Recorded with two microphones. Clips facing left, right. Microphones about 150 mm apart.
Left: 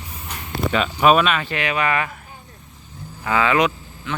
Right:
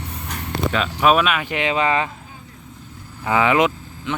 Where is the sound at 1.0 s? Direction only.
Centre (ahead or behind); by 2.1 s 25° right (ahead or behind).